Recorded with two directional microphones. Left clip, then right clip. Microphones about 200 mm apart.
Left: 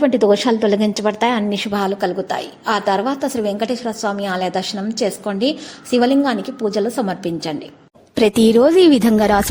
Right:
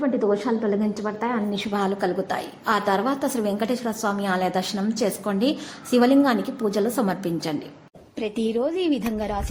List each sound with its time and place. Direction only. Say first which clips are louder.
0.0 s a woman's voice: left 9 dB; 40° left (ahead or behind)
1.5 s a woman's voice: left 5 dB; 20° left (ahead or behind)
8.1 s a woman's voice: left 13 dB; 65° left (ahead or behind)